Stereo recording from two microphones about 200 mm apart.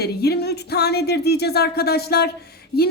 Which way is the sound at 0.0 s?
55° left (ahead or behind).